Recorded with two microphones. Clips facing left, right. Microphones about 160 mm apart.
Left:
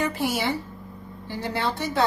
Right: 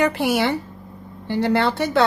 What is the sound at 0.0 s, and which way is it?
A woman's voice, 70° right (ahead or behind).